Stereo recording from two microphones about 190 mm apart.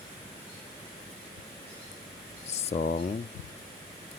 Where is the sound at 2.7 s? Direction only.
55° left (ahead or behind).